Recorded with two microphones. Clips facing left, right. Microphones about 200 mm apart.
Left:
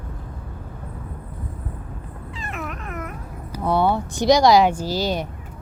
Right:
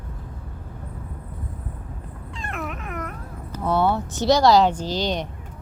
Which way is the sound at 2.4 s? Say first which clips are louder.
Right 1 dB; centre (ahead or behind).